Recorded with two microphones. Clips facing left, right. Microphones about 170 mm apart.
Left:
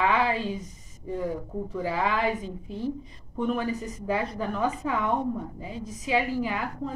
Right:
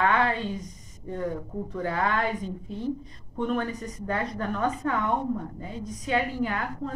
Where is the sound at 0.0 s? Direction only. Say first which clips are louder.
Even; 5° left (ahead or behind).